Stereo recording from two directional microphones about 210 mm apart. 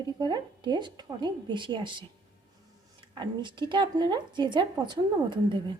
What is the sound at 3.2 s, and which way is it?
Speech, 20° right (ahead or behind).